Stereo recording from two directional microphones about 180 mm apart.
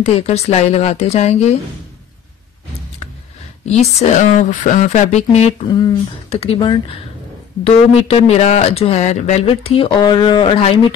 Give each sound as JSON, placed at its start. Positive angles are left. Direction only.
{"t": 0.0, "sound": "speech", "side_deg": 35}
{"t": 3.6, "sound": "speech", "side_deg": 35}